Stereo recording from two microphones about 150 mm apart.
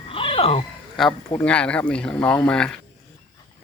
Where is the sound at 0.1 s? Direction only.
35° left (ahead or behind).